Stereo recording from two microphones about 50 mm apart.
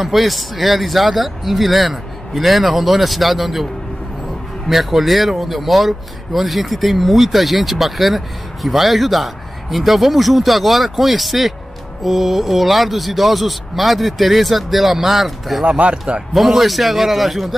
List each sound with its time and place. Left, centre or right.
0.0 s speech: centre
4.6 s speech: centre
15.6 s speech: right
16.3 s speech: centre